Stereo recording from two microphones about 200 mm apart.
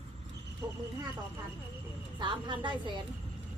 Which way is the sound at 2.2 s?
25° right (ahead or behind).